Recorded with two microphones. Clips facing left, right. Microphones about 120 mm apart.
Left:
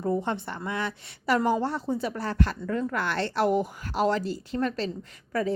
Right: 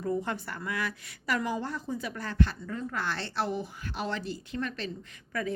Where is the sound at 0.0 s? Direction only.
30° left (ahead or behind).